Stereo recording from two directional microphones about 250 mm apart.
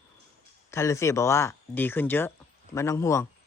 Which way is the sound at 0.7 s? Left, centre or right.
Centre.